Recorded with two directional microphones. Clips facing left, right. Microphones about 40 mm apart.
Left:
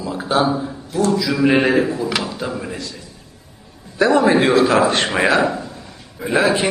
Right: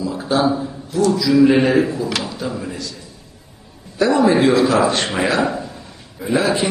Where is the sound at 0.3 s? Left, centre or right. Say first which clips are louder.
Even; left.